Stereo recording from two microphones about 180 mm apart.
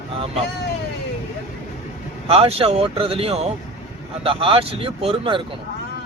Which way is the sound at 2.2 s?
30° right (ahead or behind).